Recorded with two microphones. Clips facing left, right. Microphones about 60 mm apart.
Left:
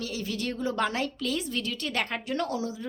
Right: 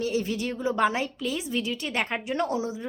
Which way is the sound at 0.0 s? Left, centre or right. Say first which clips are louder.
Right 6 dB; right.